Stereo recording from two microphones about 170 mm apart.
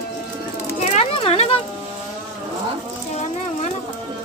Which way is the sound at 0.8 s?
40° left (ahead or behind).